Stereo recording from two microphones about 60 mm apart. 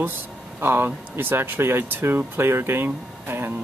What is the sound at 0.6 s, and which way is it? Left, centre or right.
Speech, right.